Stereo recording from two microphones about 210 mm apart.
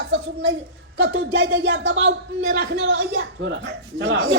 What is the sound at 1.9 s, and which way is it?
Speech, 65° right (ahead or behind).